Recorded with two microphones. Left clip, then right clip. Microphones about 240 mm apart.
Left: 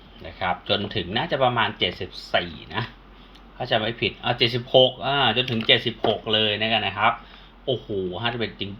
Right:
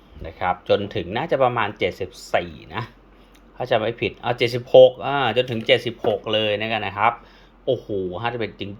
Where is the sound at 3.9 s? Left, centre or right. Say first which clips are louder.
Right 1 dB; right.